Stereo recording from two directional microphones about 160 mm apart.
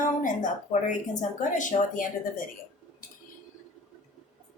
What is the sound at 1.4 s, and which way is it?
Speech, 50° left (ahead or behind).